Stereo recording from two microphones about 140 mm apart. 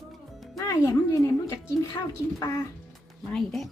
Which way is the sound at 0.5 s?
25° left (ahead or behind).